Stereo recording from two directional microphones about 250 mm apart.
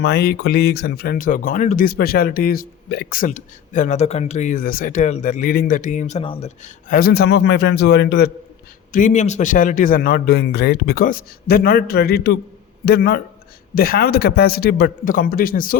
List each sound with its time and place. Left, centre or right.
0.0 s speech: left